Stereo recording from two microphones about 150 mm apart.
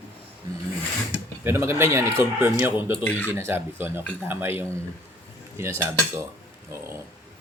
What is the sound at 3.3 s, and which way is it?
Speech, 15° right (ahead or behind).